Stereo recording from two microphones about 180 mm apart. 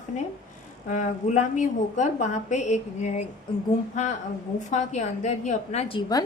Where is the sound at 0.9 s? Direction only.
40° left (ahead or behind).